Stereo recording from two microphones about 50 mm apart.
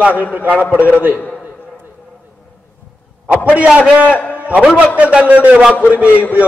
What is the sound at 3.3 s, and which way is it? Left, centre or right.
Speech, right.